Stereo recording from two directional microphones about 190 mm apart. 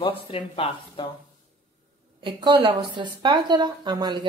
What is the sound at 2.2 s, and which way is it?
A woman's voice, 25° right (ahead or behind).